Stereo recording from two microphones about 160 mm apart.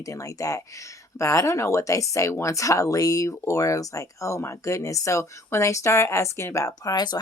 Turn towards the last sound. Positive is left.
turn(degrees=25)  # may be behind; listen again after turning